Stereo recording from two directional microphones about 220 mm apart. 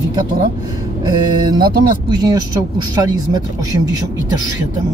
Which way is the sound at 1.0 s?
20° right (ahead or behind).